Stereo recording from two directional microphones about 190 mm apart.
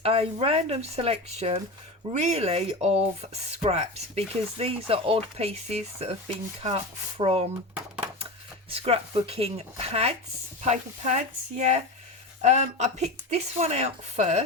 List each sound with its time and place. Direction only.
0.0 s speech: 30° right (ahead or behind)
8.7 s speech: 30° right (ahead or behind)